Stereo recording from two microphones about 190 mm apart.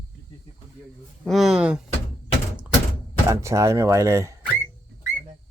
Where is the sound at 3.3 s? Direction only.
15° right (ahead or behind).